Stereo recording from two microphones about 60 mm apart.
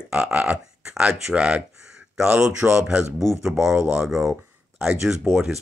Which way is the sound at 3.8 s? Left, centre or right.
Right.